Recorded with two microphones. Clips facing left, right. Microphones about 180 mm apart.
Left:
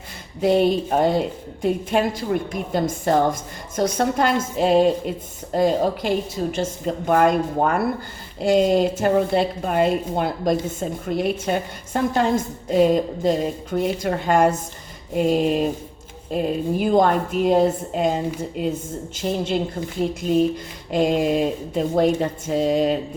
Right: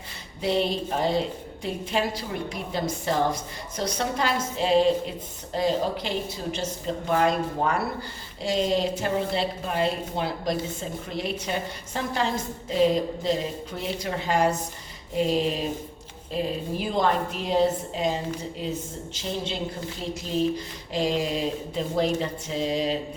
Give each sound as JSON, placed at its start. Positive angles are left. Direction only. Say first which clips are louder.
{"t": 0.4, "sound": "a woman's voice", "louder": "left 7 dB", "side_deg": 50}
{"t": 20.9, "sound": "a woman's voice", "louder": "left 7 dB", "side_deg": 55}